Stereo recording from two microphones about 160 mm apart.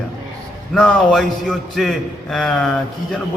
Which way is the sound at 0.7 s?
5° left (ahead or behind).